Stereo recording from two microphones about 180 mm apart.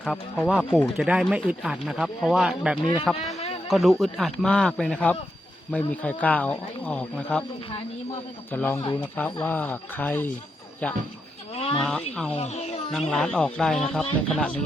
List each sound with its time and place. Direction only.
0.0 s speech: centre (ahead or behind)
0.6 s speech: 10° left (ahead or behind)
0.9 s speech: 5° right (ahead or behind)
8.5 s speech: 10° left (ahead or behind)
11.5 s a sound: 30° left (ahead or behind)
11.8 s speech: 5° left (ahead or behind)
12.3 s speech: 40° left (ahead or behind)
12.9 s speech: centre (ahead or behind)